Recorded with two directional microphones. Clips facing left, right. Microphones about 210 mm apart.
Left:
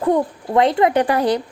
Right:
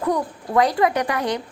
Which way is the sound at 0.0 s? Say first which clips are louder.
Left 5 dB; 25° left (ahead or behind).